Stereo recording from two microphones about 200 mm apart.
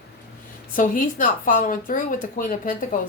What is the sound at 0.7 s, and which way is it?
A woman's voice, 40° left (ahead or behind).